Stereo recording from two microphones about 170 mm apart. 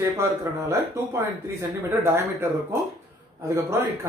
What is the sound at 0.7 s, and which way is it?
Speech, 15° right (ahead or behind).